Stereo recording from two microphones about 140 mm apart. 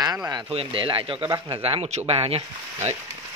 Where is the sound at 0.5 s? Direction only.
45° right (ahead or behind).